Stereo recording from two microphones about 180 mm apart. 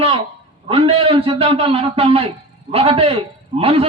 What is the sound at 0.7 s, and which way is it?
A man's voice, 30° right (ahead or behind).